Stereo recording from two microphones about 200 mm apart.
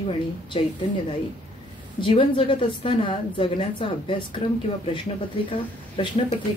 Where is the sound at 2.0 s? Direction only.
25° left (ahead or behind).